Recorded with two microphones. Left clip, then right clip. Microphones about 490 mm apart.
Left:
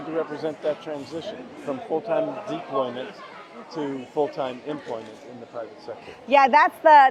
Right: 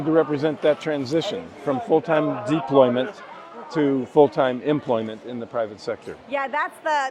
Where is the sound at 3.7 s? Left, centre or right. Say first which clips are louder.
Right 9 dB; right.